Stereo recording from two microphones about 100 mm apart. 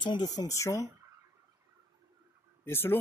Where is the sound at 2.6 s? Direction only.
25° left (ahead or behind).